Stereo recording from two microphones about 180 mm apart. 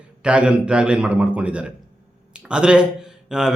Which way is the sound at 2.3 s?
5° right (ahead or behind).